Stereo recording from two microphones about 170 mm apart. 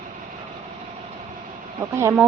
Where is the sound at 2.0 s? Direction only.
15° right (ahead or behind).